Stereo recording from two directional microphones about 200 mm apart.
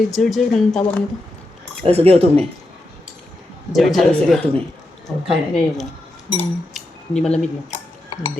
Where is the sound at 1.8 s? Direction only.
30° right (ahead or behind).